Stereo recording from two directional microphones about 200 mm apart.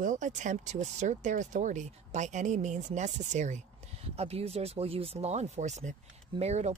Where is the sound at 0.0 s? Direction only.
40° right (ahead or behind).